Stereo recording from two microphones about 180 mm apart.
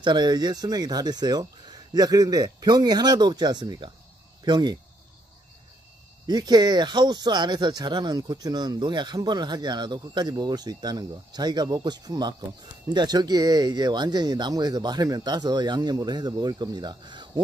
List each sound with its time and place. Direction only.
0.0 s speech: 25° right (ahead or behind)
6.2 s speech: 20° right (ahead or behind)